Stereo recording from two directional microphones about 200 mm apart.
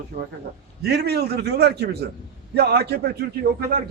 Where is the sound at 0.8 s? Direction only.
55° right (ahead or behind).